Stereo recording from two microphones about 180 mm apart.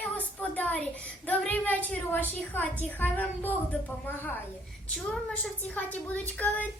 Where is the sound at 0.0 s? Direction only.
10° left (ahead or behind).